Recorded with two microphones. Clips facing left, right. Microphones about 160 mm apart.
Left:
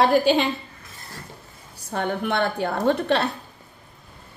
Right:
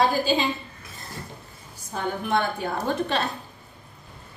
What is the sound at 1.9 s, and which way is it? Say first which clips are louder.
Speech: left 1 dB; 70° left (ahead or behind).